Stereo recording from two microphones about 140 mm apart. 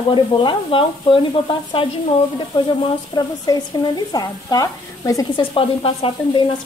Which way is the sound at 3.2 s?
30° left (ahead or behind).